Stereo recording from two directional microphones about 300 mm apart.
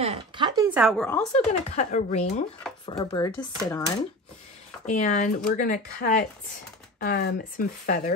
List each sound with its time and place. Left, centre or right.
0.0 s speech: centre
1.3 s speech: left
4.8 s speech: left